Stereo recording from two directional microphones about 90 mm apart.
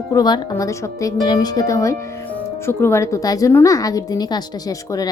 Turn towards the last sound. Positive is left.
turn(degrees=45)  # may be behind; listen again after turning